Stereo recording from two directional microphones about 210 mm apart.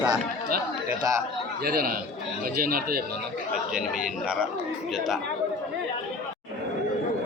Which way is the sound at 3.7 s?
5° right (ahead or behind).